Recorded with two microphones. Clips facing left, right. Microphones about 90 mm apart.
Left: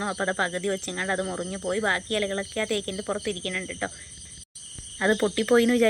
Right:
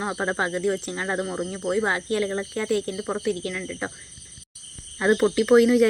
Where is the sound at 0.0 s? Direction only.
10° right (ahead or behind).